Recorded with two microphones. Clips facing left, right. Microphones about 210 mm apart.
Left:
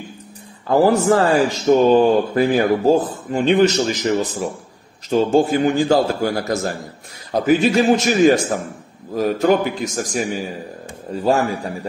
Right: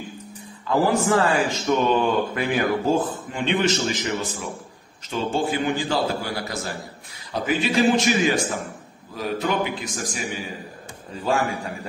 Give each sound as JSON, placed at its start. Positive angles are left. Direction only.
{"t": 0.7, "sound": "a man's voice", "side_deg": 40}